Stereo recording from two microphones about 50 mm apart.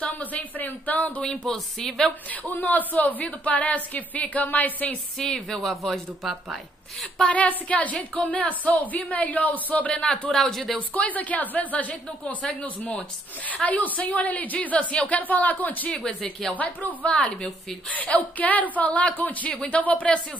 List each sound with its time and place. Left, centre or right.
0.0 s a woman's voice: left
1.2 s speech: centre
2.4 s a woman's voice: left
5.3 s speech: centre
7.3 s a woman's voice: left
10.3 s speech: centre
11.0 s a woman's voice: left
13.7 s a woman's voice: left
15.9 s speech: left
16.5 s a woman's voice: left